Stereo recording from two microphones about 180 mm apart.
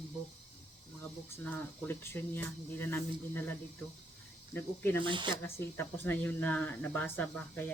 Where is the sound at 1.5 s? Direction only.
10° left (ahead or behind).